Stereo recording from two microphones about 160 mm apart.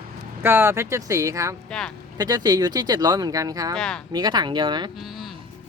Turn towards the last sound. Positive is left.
turn(degrees=-30)  # may be behind; listen again after turning